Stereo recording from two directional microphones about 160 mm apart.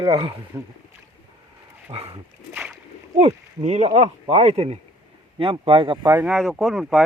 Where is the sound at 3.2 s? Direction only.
40° right (ahead or behind).